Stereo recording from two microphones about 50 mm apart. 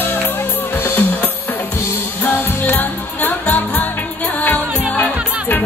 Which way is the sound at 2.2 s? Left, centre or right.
Left.